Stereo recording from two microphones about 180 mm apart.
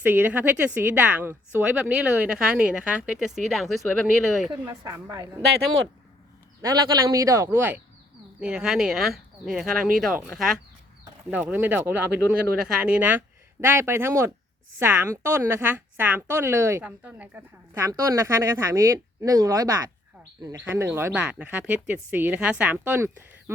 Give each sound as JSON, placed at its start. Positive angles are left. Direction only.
{"t": 0.0, "sound": "a woman's voice", "side_deg": -10}
{"t": 4.7, "sound": "speech", "side_deg": -20}
{"t": 6.6, "sound": "a woman's voice", "side_deg": -20}